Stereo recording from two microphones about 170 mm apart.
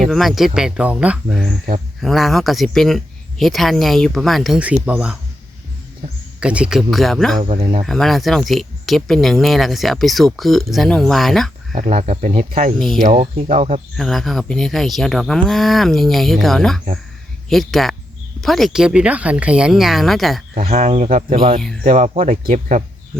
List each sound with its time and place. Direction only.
0.0 s speech: centre (ahead or behind)
6.4 s speech: 5° right (ahead or behind)
7.4 s speech: 40° right (ahead or behind)
7.9 s speech: centre (ahead or behind)
11.7 s speech: 45° right (ahead or behind)
12.5 s speech: 50° right (ahead or behind)
13.1 s speech: 40° right (ahead or behind)
13.9 s speech: centre (ahead or behind)
20.6 s speech: 40° right (ahead or behind)
22.3 s speech: 50° right (ahead or behind)